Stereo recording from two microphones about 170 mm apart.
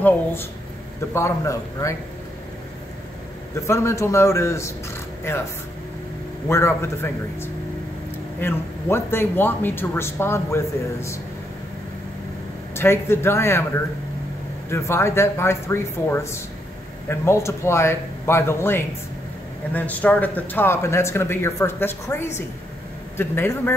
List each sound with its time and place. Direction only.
0.0 s a man's voice: 10° left (ahead or behind)
3.6 s a man's voice: 15° left (ahead or behind)
6.5 s a man's voice: 15° left (ahead or behind)
12.7 s a man's voice: 15° left (ahead or behind)
14.7 s a man's voice: 15° left (ahead or behind)